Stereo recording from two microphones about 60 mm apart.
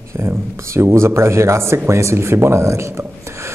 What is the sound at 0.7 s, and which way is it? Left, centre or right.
Speech, right.